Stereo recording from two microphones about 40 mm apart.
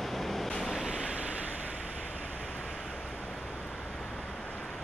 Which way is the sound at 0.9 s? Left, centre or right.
Right.